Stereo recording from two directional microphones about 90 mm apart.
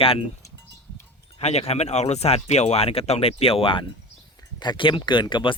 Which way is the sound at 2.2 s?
90° left.